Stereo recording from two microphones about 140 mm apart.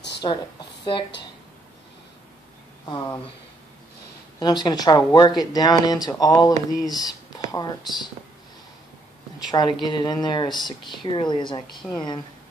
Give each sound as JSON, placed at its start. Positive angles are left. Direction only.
{"t": 0.2, "sound": "a woman's voice", "side_deg": 30}
{"t": 4.4, "sound": "speech", "side_deg": 30}
{"t": 9.5, "sound": "speech", "side_deg": 30}